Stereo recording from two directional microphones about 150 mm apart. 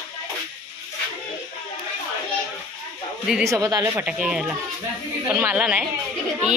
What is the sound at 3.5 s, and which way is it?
Speech, 25° right (ahead or behind).